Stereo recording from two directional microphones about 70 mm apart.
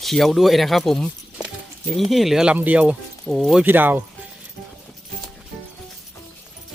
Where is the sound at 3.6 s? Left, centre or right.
Right.